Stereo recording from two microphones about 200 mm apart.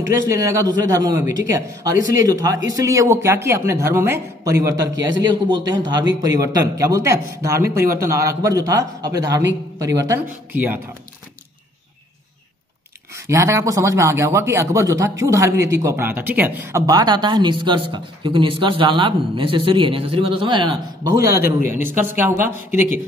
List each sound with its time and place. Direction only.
0.0 s speech: 15° right (ahead or behind)
13.1 s speech: 15° right (ahead or behind)